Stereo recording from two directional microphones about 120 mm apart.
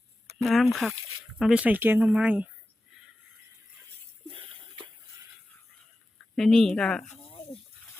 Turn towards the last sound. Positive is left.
turn(degrees=5)  # may be behind; listen again after turning